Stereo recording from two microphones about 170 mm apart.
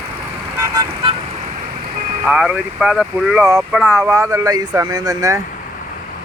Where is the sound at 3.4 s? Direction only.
15° right (ahead or behind).